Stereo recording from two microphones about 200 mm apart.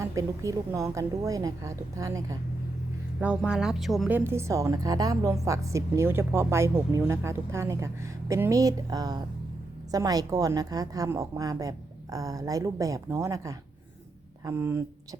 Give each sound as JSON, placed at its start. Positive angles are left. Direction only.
{"t": 0.0, "sound": "a woman's voice", "side_deg": -15}
{"t": 3.2, "sound": "speech", "side_deg": -5}
{"t": 4.2, "sound": "a woman's voice", "side_deg": -10}